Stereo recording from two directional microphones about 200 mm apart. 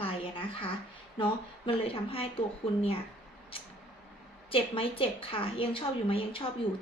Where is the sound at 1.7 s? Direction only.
30° left (ahead or behind).